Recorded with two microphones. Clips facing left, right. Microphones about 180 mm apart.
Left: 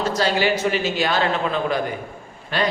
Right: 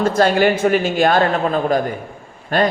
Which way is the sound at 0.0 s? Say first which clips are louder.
Right 6 dB; 50° right (ahead or behind).